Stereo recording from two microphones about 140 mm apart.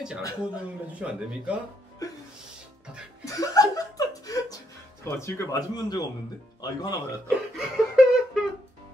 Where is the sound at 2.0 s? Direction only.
25° left (ahead or behind).